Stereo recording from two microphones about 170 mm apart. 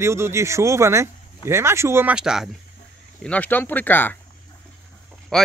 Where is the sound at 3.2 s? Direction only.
10° left (ahead or behind).